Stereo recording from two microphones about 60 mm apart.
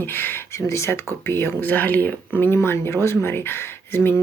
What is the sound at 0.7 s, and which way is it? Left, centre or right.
Speech, left.